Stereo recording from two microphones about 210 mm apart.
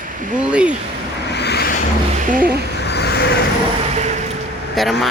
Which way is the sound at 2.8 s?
50° left (ahead or behind).